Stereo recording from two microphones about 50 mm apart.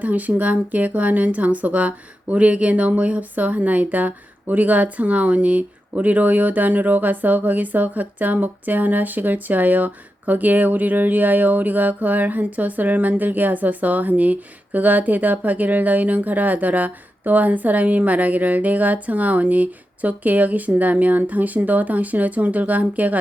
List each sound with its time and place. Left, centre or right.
0.0 s speech: right